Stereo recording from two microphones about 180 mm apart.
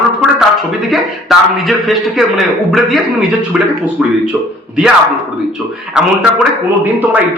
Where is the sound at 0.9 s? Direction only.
Centre (ahead or behind).